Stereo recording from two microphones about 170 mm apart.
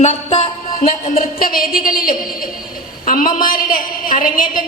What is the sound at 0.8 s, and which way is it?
A woman's voice, 50° left (ahead or behind).